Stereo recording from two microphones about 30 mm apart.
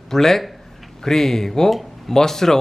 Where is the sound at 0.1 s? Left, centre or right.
Centre.